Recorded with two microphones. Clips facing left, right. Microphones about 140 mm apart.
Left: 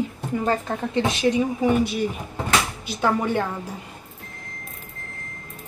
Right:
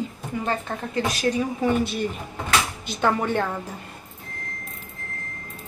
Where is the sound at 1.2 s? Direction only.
15° left (ahead or behind).